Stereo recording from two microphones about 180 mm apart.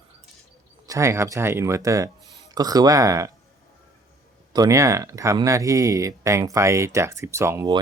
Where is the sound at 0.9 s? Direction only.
15° right (ahead or behind).